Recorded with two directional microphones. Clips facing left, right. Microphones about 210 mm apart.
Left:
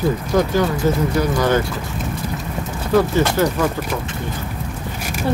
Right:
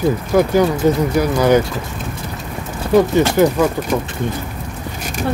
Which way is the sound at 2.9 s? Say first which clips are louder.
Right 4 dB; 20° right (ahead or behind).